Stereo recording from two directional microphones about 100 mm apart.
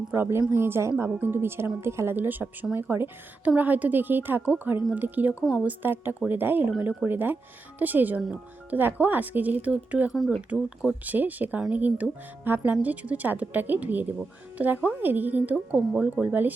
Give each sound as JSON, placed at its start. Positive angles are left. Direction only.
{"t": 0.1, "sound": "a woman's voice", "side_deg": -25}
{"t": 10.1, "sound": "speech", "side_deg": 0}
{"t": 11.0, "sound": "a woman's voice", "side_deg": -15}